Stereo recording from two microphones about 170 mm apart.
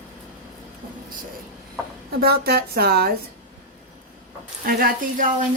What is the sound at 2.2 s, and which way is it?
Speech, 65° right (ahead or behind).